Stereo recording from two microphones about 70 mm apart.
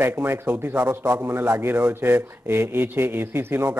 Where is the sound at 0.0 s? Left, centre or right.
Right.